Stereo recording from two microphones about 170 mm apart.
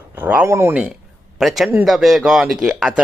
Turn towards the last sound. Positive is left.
turn(degrees=-5)  # may be behind; listen again after turning